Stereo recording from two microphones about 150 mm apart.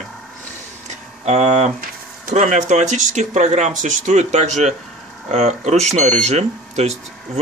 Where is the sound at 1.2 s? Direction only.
45° right (ahead or behind).